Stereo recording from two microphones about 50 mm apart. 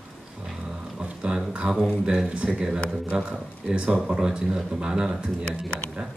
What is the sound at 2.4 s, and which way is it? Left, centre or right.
Speech, centre.